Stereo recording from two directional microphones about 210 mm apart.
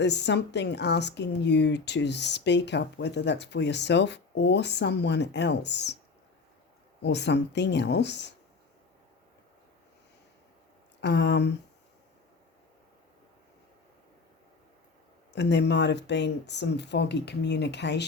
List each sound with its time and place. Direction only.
0.0 s speech: 55° left (ahead or behind)
7.0 s speech: 55° left (ahead or behind)
11.0 s speech: 55° left (ahead or behind)
15.3 s speech: 55° left (ahead or behind)